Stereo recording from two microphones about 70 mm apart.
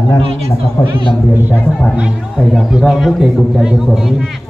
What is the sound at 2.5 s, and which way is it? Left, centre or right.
A man's voice, centre.